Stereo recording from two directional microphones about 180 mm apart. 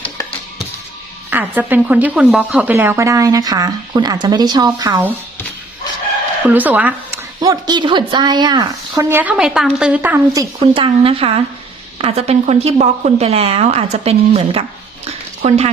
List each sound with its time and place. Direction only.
1.3 s a woman's voice: 10° right (ahead or behind)
6.5 s a woman's voice: 10° right (ahead or behind)
7.3 s a woman's voice: 20° right (ahead or behind)
10.8 s a woman's voice: 30° right (ahead or behind)